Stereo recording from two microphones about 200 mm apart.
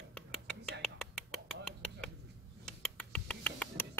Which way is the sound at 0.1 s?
5° left (ahead or behind).